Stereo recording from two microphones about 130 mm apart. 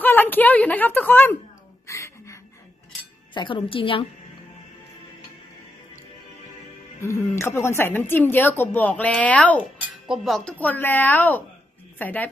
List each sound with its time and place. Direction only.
0.0 s a woman's voice: 15° left (ahead or behind)
1.9 s a sound: 20° left (ahead or behind)
3.3 s a woman's voice: 40° left (ahead or behind)
7.0 s a woman's voice: 20° left (ahead or behind)
10.0 s speech: 5° right (ahead or behind)
10.6 s a woman's voice: 15° left (ahead or behind)